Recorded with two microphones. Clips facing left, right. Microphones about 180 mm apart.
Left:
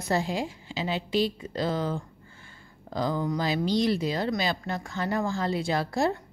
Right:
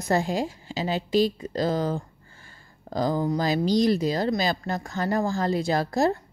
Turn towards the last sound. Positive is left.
turn(degrees=-40)  # may be behind; listen again after turning